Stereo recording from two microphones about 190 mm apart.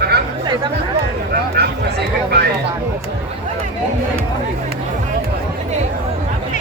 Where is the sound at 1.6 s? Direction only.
60° right (ahead or behind).